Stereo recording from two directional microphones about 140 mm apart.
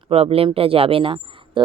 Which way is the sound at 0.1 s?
45° right (ahead or behind).